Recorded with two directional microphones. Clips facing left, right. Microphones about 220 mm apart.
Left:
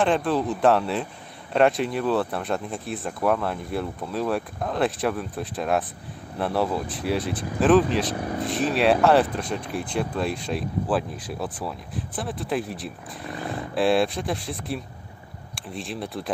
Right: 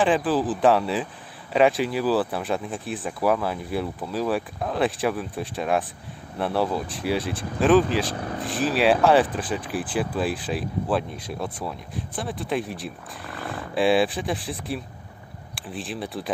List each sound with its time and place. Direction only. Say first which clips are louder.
0.0 s speech: right 1 dB; centre (ahead or behind)